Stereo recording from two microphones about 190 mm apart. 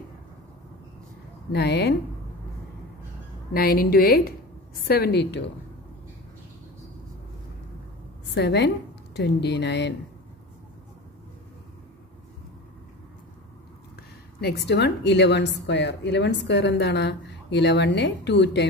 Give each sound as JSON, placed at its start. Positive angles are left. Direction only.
{"t": 1.5, "sound": "a woman's voice", "side_deg": 60}
{"t": 3.5, "sound": "a woman's voice", "side_deg": 55}
{"t": 8.4, "sound": "a woman's voice", "side_deg": 65}
{"t": 14.4, "sound": "a woman's voice", "side_deg": 60}